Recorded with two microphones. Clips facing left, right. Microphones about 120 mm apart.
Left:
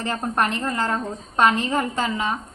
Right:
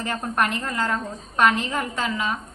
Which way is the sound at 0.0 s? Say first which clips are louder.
Left 1 dB; 25° left (ahead or behind).